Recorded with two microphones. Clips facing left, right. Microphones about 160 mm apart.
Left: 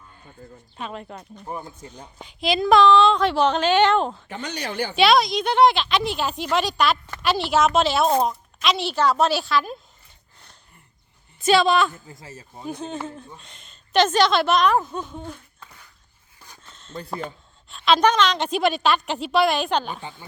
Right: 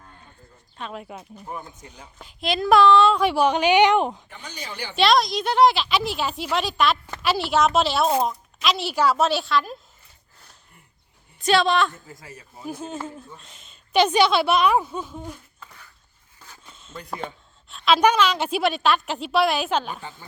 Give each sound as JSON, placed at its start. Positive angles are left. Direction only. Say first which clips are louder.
{"t": 0.8, "sound": "a woman's voice", "louder": "left 1 dB", "side_deg": 0}
{"t": 1.5, "sound": "speech", "louder": "left 3 dB", "side_deg": 30}
{"t": 2.1, "sound": "a woman's voice", "louder": "left 3 dB", "side_deg": 0}
{"t": 4.3, "sound": "speech", "louder": "left 7 dB", "side_deg": 80}
{"t": 4.9, "sound": "a woman's voice", "louder": "left 1 dB", "side_deg": 0}
{"t": 11.3, "sound": "a woman's voice", "louder": "left 2 dB", "side_deg": 0}
{"t": 12.2, "sound": "speech", "louder": "left 2 dB", "side_deg": 30}
{"t": 12.6, "sound": "a woman's voice", "louder": "left 1 dB", "side_deg": -5}
{"t": 16.6, "sound": "a sound", "louder": "even", "side_deg": -5}
{"t": 16.9, "sound": "speech", "louder": "left 2 dB", "side_deg": 30}
{"t": 17.7, "sound": "a woman's voice", "louder": "even", "side_deg": 0}